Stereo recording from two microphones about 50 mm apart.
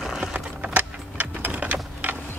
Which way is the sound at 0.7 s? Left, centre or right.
Right.